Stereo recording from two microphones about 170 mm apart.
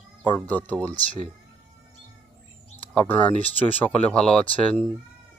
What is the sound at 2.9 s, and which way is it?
Speech, 10° left (ahead or behind).